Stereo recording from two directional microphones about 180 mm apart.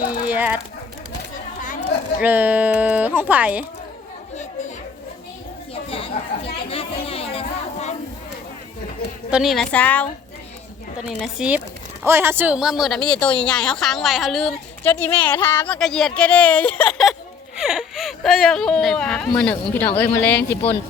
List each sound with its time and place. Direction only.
0.3 s speech: 10° right (ahead or behind)
1.6 s a sound: 45° left (ahead or behind)
2.2 s speech: 10° right (ahead or behind)
5.7 s chatter: 30° left (ahead or behind)
9.3 s a woman's voice: centre (ahead or behind)
11.0 s a woman's voice: 5° right (ahead or behind)